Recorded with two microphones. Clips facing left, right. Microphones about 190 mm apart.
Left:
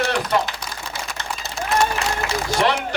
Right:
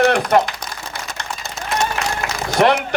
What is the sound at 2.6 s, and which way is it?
Speech, 55° right (ahead or behind).